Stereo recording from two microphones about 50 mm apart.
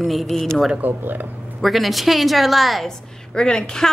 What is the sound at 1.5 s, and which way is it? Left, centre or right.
A woman's voice, centre.